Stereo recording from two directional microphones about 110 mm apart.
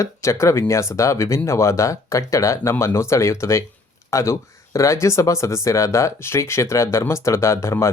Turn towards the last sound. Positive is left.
turn(degrees=25)  # may be behind; listen again after turning